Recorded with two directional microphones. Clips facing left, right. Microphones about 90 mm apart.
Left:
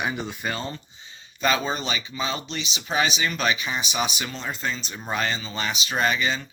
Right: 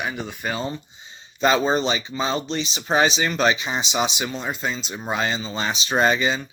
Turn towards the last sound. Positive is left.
turn(degrees=-25)  # may be behind; listen again after turning